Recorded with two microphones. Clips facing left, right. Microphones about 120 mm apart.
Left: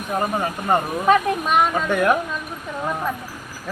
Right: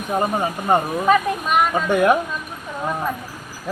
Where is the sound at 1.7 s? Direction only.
15° right (ahead or behind).